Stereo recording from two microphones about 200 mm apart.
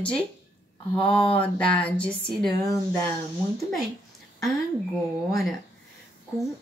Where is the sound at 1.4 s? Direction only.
5° left (ahead or behind).